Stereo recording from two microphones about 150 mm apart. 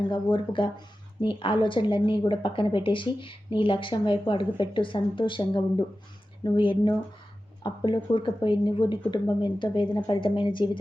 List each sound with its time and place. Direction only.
0.1 s speech: 35° left (ahead or behind)